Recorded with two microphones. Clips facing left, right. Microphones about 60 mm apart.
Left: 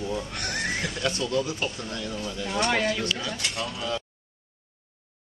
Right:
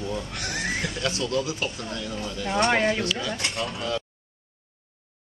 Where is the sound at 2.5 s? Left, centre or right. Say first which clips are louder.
Right 3 dB; right.